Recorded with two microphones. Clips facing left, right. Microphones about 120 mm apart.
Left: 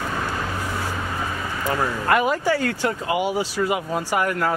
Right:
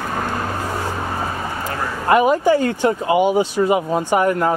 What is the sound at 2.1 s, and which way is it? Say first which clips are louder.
Speech: right 7 dB; 20° right (ahead or behind).